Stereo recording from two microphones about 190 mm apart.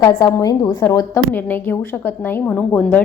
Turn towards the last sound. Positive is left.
turn(degrees=10)  # may be behind; listen again after turning